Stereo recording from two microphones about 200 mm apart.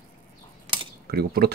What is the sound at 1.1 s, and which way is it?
Speech, 50° right (ahead or behind).